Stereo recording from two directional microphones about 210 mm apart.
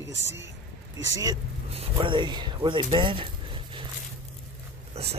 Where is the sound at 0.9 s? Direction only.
20° right (ahead or behind).